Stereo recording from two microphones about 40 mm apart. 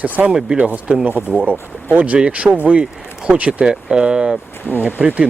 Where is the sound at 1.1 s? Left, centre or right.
Left.